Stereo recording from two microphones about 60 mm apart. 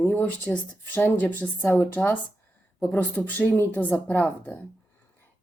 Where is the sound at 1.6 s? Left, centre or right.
Left.